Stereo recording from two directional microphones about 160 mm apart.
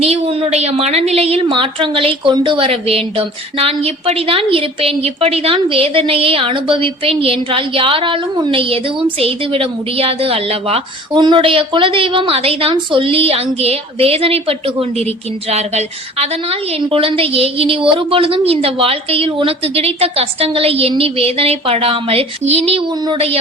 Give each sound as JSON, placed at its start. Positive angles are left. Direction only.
{"t": 0.0, "sound": "a woman's voice", "side_deg": -35}